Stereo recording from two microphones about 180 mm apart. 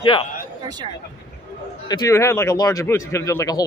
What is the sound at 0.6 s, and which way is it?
Speech, 25° right (ahead or behind).